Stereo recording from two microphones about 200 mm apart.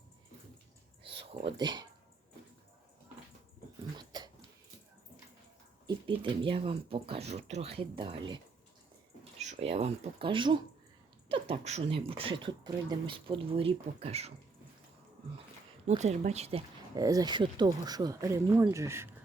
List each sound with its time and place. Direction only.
1.0 s a sound: 25° right (ahead or behind)
3.9 s dog: 20° right (ahead or behind)
5.8 s speech: 25° right (ahead or behind)
9.4 s speech: 35° right (ahead or behind)
15.9 s speech: 35° right (ahead or behind)
17.0 s speech: 15° right (ahead or behind)